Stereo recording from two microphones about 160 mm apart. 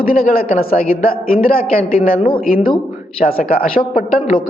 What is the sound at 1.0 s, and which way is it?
A man's voice, 65° left (ahead or behind).